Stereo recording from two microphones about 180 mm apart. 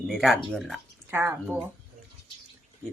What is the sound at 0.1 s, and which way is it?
Speech, centre (ahead or behind).